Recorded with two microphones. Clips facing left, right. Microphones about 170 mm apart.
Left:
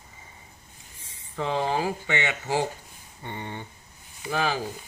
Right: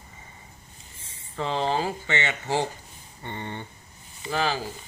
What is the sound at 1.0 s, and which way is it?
Speech, 15° left (ahead or behind).